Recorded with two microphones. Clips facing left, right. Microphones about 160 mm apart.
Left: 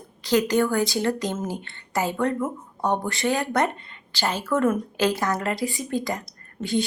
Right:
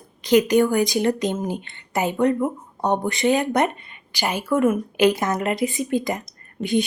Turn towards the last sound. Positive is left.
turn(degrees=-20)  # may be behind; listen again after turning